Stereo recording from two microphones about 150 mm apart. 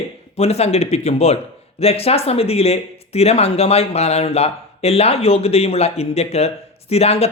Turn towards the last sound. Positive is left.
turn(degrees=45)  # may be behind; listen again after turning